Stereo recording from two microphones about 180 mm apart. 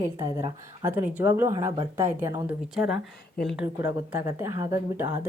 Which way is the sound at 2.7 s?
Centre (ahead or behind).